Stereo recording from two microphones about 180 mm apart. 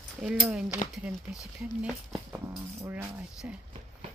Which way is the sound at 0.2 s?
5° right (ahead or behind).